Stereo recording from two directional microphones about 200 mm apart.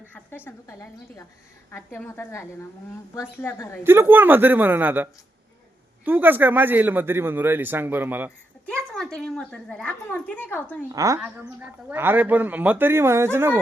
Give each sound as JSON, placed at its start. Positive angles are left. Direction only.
{"t": 0.1, "sound": "a woman's voice", "side_deg": 10}
{"t": 3.8, "sound": "a man's voice", "side_deg": -10}
{"t": 6.1, "sound": "a man's voice", "side_deg": -10}
{"t": 8.7, "sound": "a woman's voice", "side_deg": 5}
{"t": 10.9, "sound": "a man's voice", "side_deg": -15}